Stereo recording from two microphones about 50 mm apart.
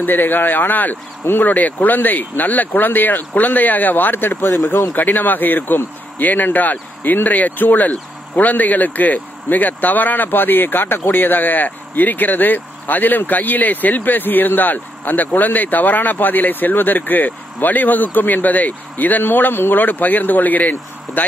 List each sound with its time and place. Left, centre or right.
0.0 s speech: left